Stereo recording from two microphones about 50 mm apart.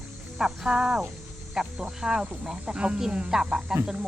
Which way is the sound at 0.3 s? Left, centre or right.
Centre.